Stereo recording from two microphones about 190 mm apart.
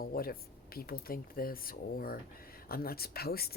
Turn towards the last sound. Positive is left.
turn(degrees=55)  # may be behind; listen again after turning